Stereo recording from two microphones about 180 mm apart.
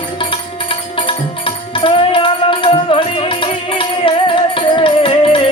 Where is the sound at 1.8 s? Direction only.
30° left (ahead or behind).